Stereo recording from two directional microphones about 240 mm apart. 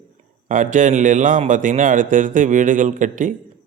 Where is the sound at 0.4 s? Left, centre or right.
Right.